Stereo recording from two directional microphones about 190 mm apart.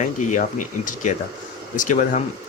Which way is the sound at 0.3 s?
45° left (ahead or behind).